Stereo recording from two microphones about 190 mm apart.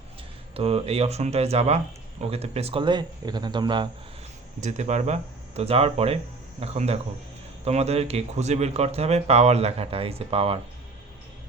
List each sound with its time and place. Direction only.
0.5 s speech: 30° right (ahead or behind)
4.6 s speech: 40° right (ahead or behind)